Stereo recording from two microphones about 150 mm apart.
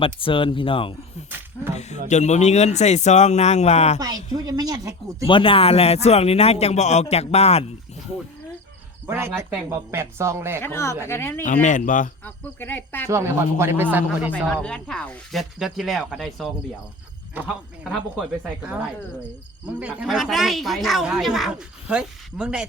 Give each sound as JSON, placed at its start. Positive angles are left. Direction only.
{"t": 0.0, "sound": "speech", "side_deg": 35}
{"t": 1.7, "sound": "a sound", "side_deg": 45}
{"t": 2.0, "sound": "speech", "side_deg": 50}
{"t": 4.0, "sound": "a woman's voice", "side_deg": -25}
{"t": 5.2, "sound": "speech", "side_deg": 35}
{"t": 9.0, "sound": "speech", "side_deg": -15}
{"t": 10.6, "sound": "speech", "side_deg": 15}
{"t": 11.4, "sound": "speech", "side_deg": 60}
{"t": 12.2, "sound": "speech", "side_deg": 15}
{"t": 13.1, "sound": "speech", "side_deg": -20}
{"t": 14.3, "sound": "speech", "side_deg": 5}
{"t": 19.6, "sound": "speech", "side_deg": -10}